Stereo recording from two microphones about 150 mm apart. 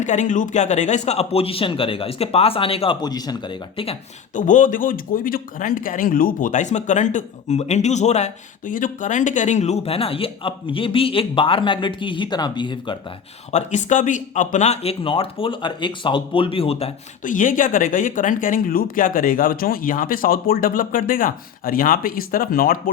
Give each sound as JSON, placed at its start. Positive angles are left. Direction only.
{"t": 0.0, "sound": "a man's voice", "side_deg": 55}
{"t": 4.4, "sound": "speech", "side_deg": 60}
{"t": 13.5, "sound": "speech", "side_deg": 50}
{"t": 17.2, "sound": "speech", "side_deg": 60}